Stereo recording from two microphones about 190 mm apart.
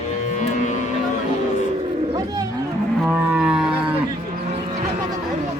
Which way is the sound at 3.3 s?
5° right (ahead or behind).